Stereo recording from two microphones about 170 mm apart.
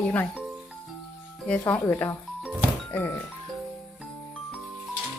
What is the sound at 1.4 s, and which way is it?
Speech, 10° left (ahead or behind).